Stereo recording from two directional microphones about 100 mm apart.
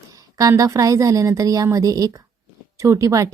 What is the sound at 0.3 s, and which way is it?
A woman's voice, 35° right (ahead or behind).